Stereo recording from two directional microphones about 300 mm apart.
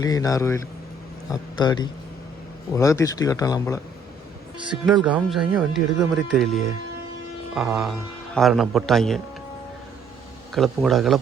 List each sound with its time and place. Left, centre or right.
0.0 s speech: centre
4.5 s speech: centre
4.9 s speech: centre
10.5 s speech: centre